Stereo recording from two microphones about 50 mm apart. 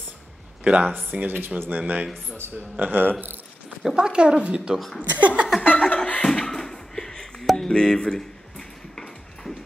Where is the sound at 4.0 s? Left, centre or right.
Centre.